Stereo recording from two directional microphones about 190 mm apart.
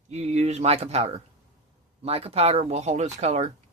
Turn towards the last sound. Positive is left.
turn(degrees=-35)  # may be behind; listen again after turning